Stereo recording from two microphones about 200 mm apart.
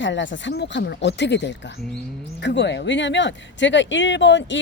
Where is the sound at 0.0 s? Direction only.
65° left (ahead or behind).